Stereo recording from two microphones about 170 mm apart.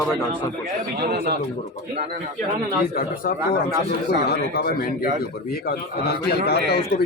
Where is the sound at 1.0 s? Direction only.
70° right (ahead or behind).